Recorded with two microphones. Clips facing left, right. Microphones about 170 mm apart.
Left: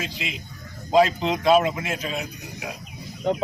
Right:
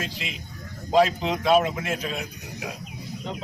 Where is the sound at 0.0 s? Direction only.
Centre (ahead or behind).